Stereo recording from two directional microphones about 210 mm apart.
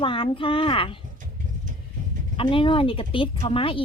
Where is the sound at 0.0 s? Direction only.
25° left (ahead or behind).